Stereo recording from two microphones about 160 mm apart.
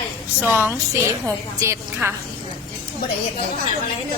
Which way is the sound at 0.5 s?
15° right (ahead or behind).